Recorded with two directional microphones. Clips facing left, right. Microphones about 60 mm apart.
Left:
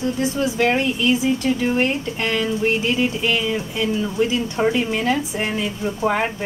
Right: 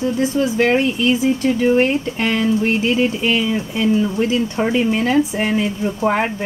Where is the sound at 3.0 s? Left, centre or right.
Right.